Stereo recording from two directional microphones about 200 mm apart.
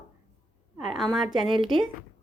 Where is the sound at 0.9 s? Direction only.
Centre (ahead or behind).